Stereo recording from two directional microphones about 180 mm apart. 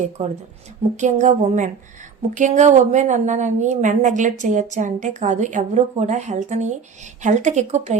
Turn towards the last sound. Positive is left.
turn(degrees=-40)  # may be behind; listen again after turning